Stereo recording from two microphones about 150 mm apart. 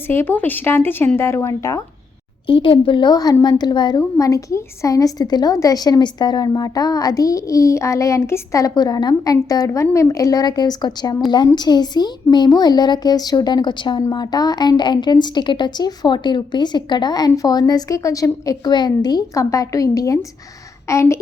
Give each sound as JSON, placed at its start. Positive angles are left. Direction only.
{"t": 0.1, "sound": "speech", "side_deg": 15}
{"t": 2.5, "sound": "a woman's voice", "side_deg": 35}